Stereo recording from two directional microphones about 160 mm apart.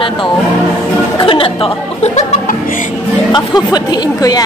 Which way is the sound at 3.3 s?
25° left (ahead or behind).